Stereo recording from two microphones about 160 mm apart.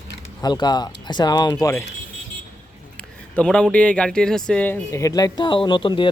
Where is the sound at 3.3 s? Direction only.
5° left (ahead or behind); by 6.1 s 30° left (ahead or behind).